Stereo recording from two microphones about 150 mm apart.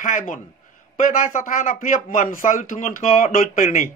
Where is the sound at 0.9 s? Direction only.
65° left (ahead or behind).